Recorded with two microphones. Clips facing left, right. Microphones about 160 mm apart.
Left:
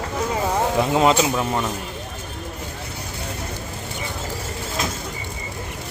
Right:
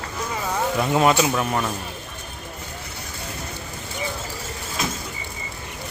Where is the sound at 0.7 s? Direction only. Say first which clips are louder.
Even; 20° left (ahead or behind).